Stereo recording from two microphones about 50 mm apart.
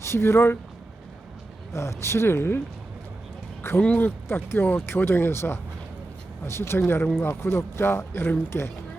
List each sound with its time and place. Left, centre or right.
0.0 s speech: left
1.7 s speech: left
3.9 s speech: left
7.2 s speech: left